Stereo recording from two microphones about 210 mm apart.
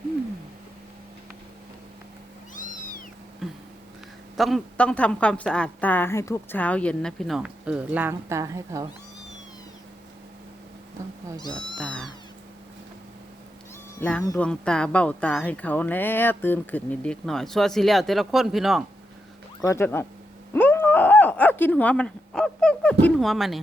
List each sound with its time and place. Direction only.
2.6 s cat: 40° left (ahead or behind)
3.4 s a sound: centre (ahead or behind)
4.4 s speech: centre (ahead or behind); by 8.9 s 15° right (ahead or behind)
11.8 s speech: centre (ahead or behind)
14.0 s speech: 10° left (ahead or behind)
19.6 s speech: 10° left (ahead or behind)